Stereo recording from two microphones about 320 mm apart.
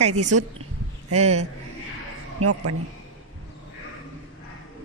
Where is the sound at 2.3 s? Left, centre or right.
Right.